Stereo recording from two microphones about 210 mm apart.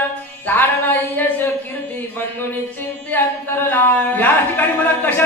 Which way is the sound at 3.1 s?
10° left (ahead or behind).